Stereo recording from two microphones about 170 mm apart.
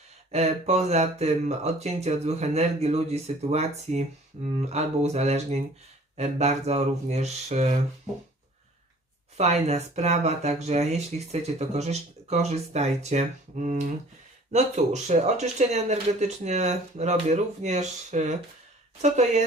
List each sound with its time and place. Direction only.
0.3 s speech: 40° right (ahead or behind)
9.4 s speech: 40° right (ahead or behind)